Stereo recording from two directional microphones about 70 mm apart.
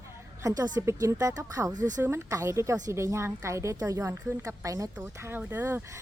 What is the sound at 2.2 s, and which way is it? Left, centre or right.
A woman's voice, right.